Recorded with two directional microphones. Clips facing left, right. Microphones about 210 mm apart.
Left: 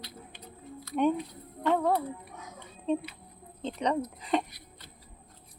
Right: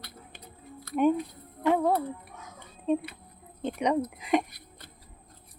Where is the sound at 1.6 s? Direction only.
10° right (ahead or behind).